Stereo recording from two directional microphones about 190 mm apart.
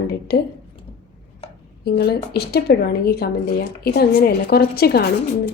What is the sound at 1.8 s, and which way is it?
A woman's voice, 55° left (ahead or behind).